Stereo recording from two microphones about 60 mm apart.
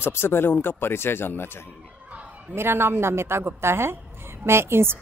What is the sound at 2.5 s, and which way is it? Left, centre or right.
A woman's voice, right.